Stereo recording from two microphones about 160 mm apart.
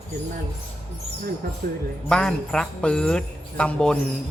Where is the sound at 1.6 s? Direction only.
60° right (ahead or behind).